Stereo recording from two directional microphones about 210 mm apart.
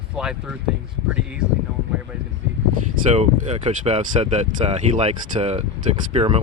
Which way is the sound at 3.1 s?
30° right (ahead or behind).